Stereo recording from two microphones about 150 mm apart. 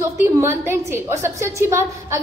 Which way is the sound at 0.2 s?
15° right (ahead or behind).